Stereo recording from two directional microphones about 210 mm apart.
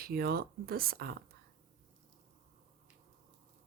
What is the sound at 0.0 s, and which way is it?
Speech, 45° right (ahead or behind).